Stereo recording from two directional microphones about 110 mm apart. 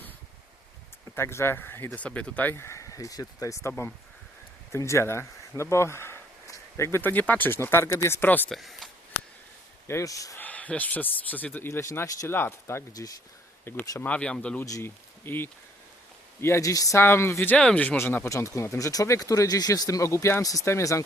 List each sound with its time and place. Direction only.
1.1 s speech: 25° left (ahead or behind)
8.4 s speech: centre (ahead or behind)
9.8 s speech: 25° left (ahead or behind)
10.3 s speech: 15° left (ahead or behind)
12.9 s speech: 35° left (ahead or behind)
13.7 s speech: 20° left (ahead or behind)
14.6 s speech: 25° left (ahead or behind)
17.0 s speech: 20° left (ahead or behind)